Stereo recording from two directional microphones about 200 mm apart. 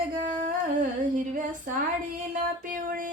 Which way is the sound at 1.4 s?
40° right (ahead or behind).